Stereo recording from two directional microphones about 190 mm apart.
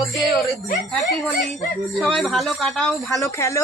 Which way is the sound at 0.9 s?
Centre (ahead or behind).